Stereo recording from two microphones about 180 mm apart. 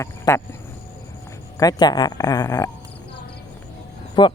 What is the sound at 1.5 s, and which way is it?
Speech, 20° left (ahead or behind).